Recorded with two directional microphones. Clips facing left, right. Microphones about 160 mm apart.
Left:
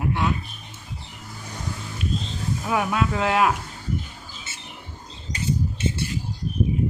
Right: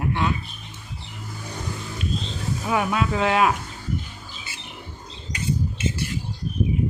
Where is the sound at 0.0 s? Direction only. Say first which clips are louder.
Even; 5° left (ahead or behind).